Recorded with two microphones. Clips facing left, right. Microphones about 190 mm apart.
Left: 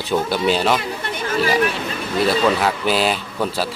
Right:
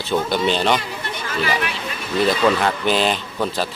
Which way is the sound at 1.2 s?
40° left (ahead or behind).